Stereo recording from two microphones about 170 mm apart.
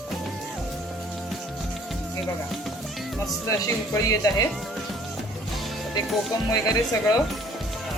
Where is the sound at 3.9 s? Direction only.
20° left (ahead or behind).